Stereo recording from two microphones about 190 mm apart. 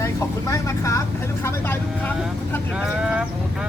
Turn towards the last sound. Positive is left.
turn(degrees=-5)  # may be behind; listen again after turning